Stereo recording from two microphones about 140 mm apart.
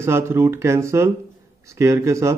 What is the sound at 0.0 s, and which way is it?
Speech, 20° right (ahead or behind).